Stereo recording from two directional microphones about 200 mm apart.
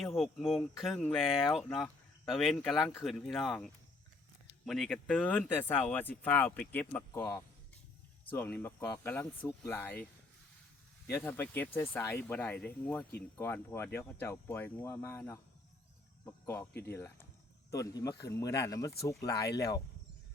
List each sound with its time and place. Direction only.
0.2 s speech: centre (ahead or behind)
11.1 s speech: 10° left (ahead or behind)